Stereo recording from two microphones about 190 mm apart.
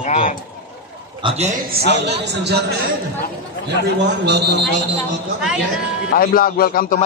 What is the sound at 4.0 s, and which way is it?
Speech, 65° right (ahead or behind).